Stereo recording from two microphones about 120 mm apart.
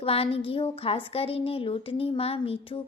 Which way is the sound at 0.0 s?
55° left (ahead or behind).